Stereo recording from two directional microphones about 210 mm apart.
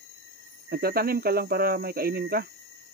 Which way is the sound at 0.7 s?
45° right (ahead or behind).